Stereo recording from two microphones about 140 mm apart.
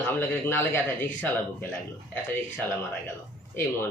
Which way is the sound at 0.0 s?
15° left (ahead or behind).